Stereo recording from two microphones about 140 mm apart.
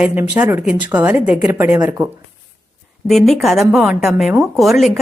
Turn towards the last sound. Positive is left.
turn(degrees=0)  # may be behind; listen again after turning